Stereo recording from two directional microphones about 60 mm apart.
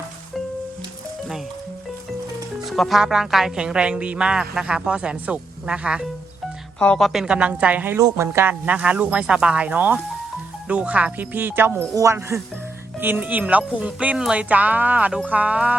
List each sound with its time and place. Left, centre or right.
2.6 s music: centre
3.0 s a woman's voice: centre
6.7 s speech: centre
7.0 s a woman's voice: centre
7.3 s speech: centre
7.9 s a woman's voice: right
8.3 s speech: right
8.6 s speech: right
12.3 s a woman's voice: centre
13.1 s speech: right